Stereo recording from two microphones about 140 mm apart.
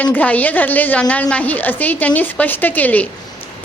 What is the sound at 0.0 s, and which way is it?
A woman's voice, 10° left (ahead or behind).